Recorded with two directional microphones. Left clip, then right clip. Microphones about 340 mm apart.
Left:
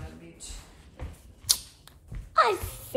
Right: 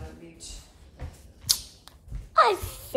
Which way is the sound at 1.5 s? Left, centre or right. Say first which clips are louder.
Right 1 dB; centre.